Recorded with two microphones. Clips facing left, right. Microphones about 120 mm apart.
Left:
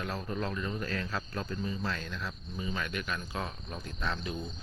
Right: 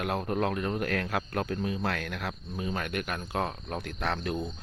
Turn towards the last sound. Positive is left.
turn(degrees=-60)  # may be behind; listen again after turning